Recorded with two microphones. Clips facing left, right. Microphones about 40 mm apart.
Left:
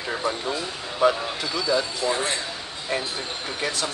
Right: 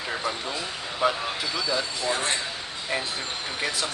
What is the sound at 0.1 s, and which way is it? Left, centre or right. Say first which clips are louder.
Speech: left 4 dB; centre.